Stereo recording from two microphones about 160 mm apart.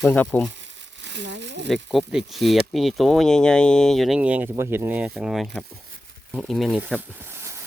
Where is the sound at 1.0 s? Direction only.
90° right.